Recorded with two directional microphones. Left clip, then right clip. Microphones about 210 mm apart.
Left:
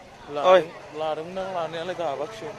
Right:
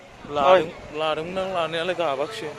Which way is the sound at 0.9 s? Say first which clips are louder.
Right 3 dB; 40° right (ahead or behind).